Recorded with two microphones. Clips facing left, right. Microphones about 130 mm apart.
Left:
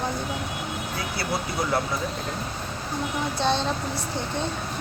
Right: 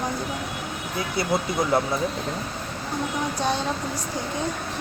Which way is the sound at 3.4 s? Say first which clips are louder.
Left 2 dB; 10° right (ahead or behind).